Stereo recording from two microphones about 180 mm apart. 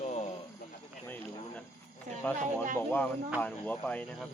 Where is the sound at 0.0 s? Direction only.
40° left (ahead or behind).